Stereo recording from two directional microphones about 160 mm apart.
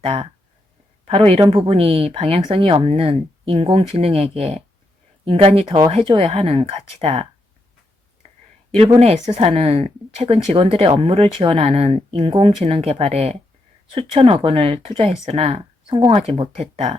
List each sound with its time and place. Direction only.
0.0 s speech: 35° right (ahead or behind)
9.0 s speech: 45° right (ahead or behind)